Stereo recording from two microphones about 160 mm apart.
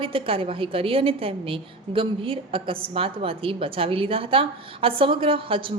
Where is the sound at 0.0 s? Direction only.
35° right (ahead or behind).